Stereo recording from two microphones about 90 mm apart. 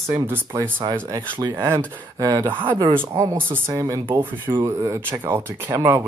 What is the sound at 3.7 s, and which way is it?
Speech, 35° right (ahead or behind).